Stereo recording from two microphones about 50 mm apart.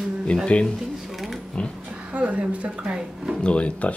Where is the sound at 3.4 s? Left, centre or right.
Left.